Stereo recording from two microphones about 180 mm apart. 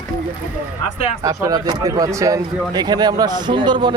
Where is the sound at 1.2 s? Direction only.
20° right (ahead or behind).